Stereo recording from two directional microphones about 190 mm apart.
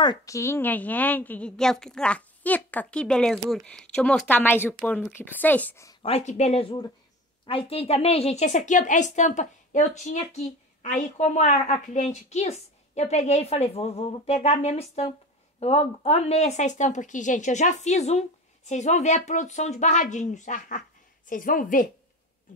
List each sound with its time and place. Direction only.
0.0 s a woman's voice: 20° left (ahead or behind)
6.0 s a woman's voice: 35° left (ahead or behind)